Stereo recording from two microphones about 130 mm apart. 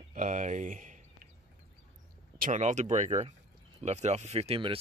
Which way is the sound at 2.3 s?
80° right.